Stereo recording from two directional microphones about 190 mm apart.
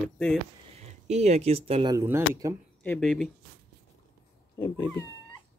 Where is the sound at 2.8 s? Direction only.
5° left (ahead or behind).